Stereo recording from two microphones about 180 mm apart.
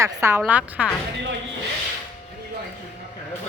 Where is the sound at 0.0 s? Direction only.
15° right (ahead or behind).